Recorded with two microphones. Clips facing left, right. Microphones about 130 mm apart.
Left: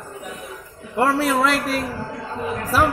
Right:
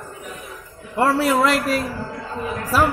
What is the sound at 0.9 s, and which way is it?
Speech, 5° right (ahead or behind).